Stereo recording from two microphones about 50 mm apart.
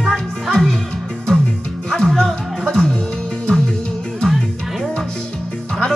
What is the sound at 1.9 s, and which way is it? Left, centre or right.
Music, centre.